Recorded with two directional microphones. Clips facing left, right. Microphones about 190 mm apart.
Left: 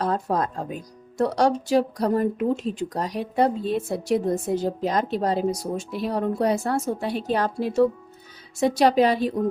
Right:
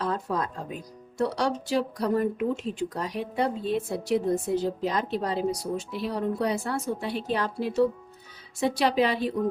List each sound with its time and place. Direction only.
0.0 s speech: 45° left (ahead or behind)